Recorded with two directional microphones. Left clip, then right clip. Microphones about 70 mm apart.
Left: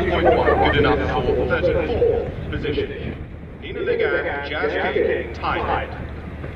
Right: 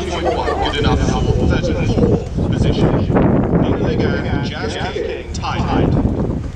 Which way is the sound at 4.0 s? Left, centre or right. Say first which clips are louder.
Right 1 dB; right.